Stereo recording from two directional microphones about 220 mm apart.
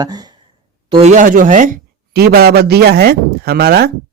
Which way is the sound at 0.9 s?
30° right (ahead or behind).